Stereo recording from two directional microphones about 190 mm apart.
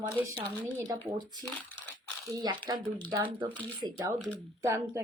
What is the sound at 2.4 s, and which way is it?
Speech, 20° right (ahead or behind).